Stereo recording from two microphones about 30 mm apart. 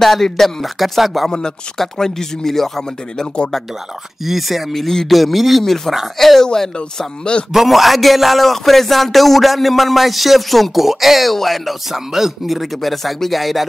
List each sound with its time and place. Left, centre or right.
0.0 s speech: centre
0.7 s speech: centre
2.0 s speech: centre
4.2 s speech: centre
4.7 s speech: centre
6.4 s speech: centre
7.5 s speech: centre